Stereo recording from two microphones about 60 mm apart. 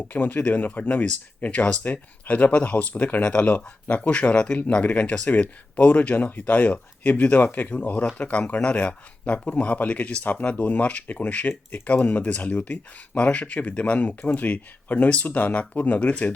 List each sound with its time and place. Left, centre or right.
0.1 s speech: left